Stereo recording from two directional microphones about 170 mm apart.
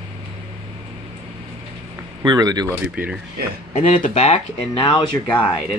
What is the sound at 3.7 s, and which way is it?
Speech, 50° left (ahead or behind).